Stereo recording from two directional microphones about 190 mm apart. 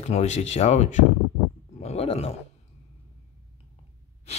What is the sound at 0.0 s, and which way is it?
Speech, 35° left (ahead or behind).